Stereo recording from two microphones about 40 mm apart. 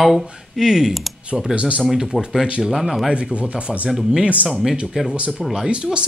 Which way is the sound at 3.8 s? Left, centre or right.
Centre.